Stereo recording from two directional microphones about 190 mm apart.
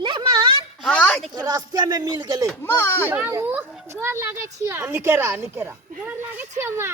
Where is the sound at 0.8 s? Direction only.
5° left (ahead or behind).